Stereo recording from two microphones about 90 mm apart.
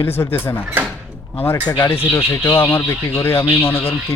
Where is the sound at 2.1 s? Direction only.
35° left (ahead or behind).